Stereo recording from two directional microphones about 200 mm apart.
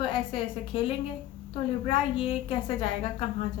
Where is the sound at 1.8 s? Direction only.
25° left (ahead or behind).